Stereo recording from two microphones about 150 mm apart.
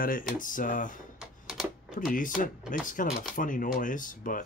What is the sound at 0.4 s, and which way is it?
Speech, 60° left (ahead or behind).